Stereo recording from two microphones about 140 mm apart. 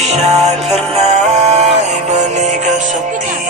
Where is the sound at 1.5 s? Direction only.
50° right (ahead or behind).